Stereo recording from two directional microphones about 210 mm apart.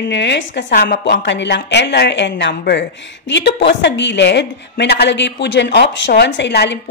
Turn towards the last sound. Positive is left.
turn(degrees=55)  # may be behind; listen again after turning